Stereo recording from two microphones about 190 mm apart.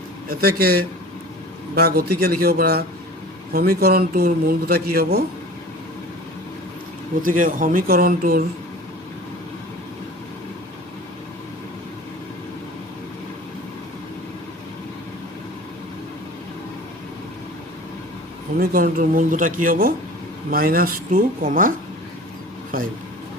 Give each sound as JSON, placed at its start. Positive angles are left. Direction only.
{"t": 0.3, "sound": "speech", "side_deg": -55}
{"t": 7.2, "sound": "speech", "side_deg": -45}
{"t": 18.5, "sound": "speech", "side_deg": -50}